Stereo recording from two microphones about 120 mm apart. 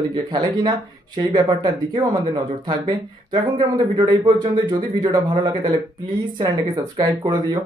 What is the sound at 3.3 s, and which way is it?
Speech, 40° right (ahead or behind).